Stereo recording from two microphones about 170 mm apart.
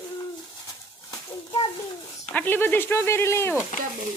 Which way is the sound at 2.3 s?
10° left (ahead or behind).